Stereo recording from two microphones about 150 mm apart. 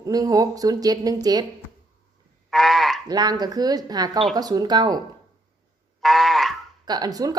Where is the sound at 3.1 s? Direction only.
25° right (ahead or behind).